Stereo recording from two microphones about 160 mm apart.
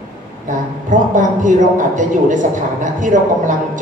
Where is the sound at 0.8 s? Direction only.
55° right (ahead or behind).